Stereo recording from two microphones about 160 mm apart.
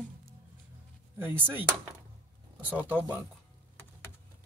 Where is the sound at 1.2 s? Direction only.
10° right (ahead or behind).